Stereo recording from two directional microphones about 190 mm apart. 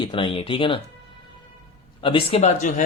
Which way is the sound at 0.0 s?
25° left (ahead or behind).